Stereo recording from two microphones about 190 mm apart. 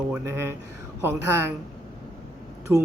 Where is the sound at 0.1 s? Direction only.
15° right (ahead or behind).